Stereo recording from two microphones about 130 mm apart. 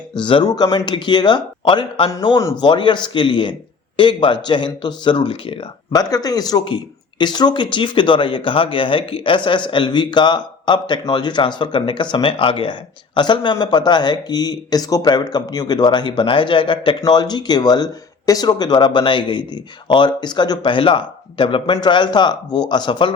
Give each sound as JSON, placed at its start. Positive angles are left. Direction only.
{"t": 0.1, "sound": "speech", "side_deg": 40}
{"t": 5.9, "sound": "speech", "side_deg": 30}